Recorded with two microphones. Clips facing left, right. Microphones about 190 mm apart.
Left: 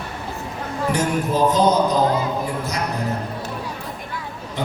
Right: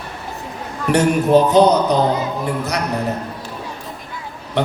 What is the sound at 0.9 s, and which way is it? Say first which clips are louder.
A man's voice: right 7 dB; 70° right (ahead or behind).